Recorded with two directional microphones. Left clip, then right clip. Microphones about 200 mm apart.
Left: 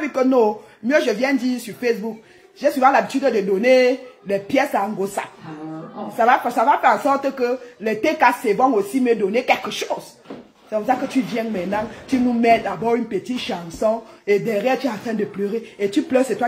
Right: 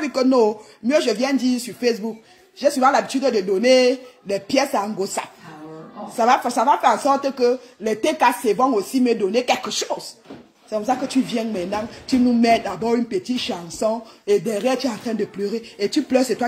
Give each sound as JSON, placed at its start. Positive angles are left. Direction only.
{"t": 0.0, "sound": "speech", "side_deg": -35}
{"t": 2.8, "sound": "speech", "side_deg": -35}
{"t": 10.7, "sound": "speech", "side_deg": -35}